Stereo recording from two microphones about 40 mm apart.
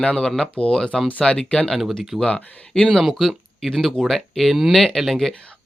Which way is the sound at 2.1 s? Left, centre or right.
Centre.